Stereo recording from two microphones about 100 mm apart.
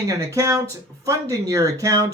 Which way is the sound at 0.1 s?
30° right (ahead or behind).